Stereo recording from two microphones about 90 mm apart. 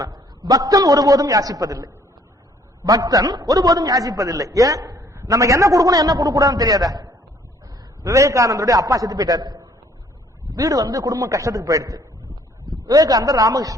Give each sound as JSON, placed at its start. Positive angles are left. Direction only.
{"t": 0.0, "sound": "a man's voice", "side_deg": -45}